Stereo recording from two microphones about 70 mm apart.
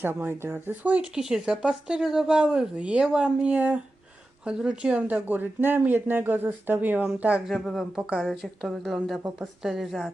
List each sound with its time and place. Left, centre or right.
0.0 s speech: right
7.4 s a woman's voice: centre